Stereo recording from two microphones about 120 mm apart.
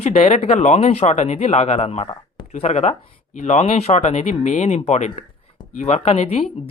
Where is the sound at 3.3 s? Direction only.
75° left (ahead or behind).